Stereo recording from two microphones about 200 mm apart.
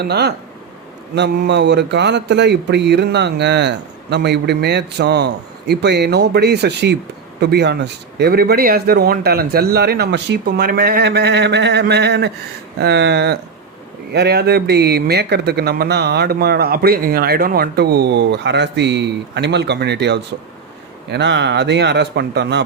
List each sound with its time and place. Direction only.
0.0 s a man's voice: 55° right (ahead or behind)